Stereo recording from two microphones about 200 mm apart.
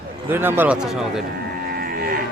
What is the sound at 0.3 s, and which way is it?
Speech, 10° right (ahead or behind).